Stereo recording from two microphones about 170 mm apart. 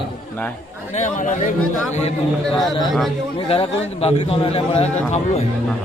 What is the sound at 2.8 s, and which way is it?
Speech, centre (ahead or behind).